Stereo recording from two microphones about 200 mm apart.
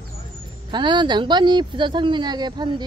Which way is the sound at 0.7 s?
20° right (ahead or behind).